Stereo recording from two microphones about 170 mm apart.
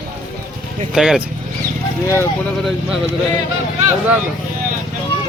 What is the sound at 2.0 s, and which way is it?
Speech, 15° left (ahead or behind).